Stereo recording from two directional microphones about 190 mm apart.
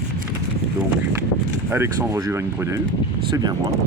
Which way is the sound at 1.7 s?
15° right (ahead or behind).